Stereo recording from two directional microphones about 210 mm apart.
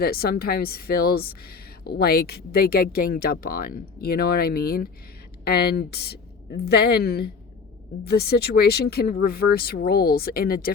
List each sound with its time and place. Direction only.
0.0 s a woman's voice: 45° left (ahead or behind)